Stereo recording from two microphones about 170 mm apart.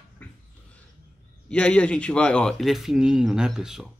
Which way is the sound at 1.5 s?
5° left (ahead or behind).